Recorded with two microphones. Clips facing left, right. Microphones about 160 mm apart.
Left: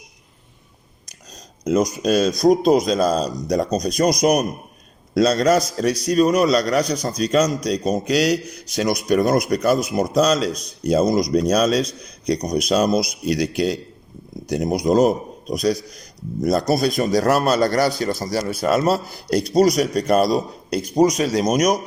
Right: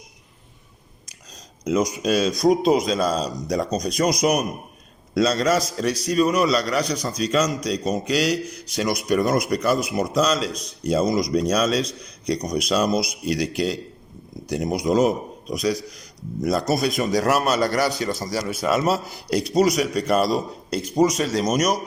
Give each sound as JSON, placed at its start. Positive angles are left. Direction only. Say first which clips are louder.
{"t": 2.0, "sound": "a man's voice", "louder": "left 3 dB", "side_deg": 40}